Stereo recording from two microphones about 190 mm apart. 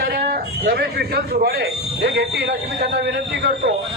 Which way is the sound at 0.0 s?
50° right (ahead or behind).